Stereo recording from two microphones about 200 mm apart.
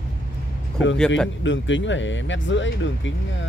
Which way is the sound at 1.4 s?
65° left (ahead or behind).